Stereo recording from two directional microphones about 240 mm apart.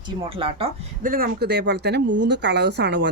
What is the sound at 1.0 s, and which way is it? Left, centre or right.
Speech, right.